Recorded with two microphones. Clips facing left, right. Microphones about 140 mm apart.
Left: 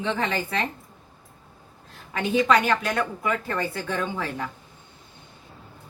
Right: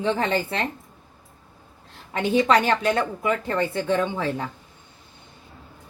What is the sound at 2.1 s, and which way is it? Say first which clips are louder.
Speech: right 2 dB; 30° right (ahead or behind).